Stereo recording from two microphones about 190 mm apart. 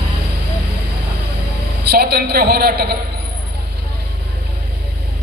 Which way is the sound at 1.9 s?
55° right (ahead or behind).